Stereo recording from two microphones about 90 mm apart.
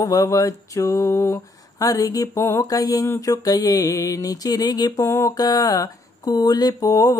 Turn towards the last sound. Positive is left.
turn(degrees=40)  # may be behind; listen again after turning